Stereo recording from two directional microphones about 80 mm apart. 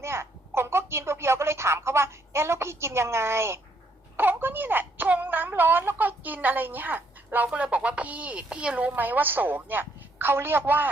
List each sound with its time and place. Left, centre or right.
0.0 s speech: right